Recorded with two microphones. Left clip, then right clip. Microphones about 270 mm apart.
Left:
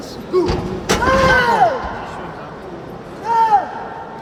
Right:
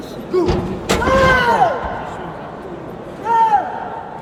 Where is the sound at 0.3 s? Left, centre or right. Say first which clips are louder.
Even; left.